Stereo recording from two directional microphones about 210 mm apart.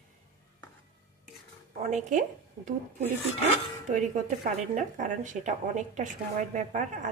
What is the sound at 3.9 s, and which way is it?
Speech, 35° right (ahead or behind).